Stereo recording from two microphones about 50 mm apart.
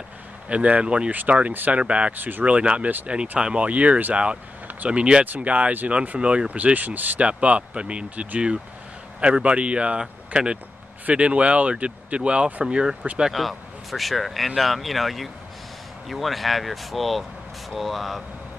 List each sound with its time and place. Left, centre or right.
0.5 s speech: right
1.1 s speech: right
2.1 s speech: right
2.4 s speech: right
13.3 s speech: centre